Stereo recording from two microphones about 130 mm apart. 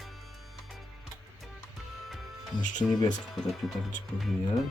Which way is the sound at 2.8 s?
5° left (ahead or behind).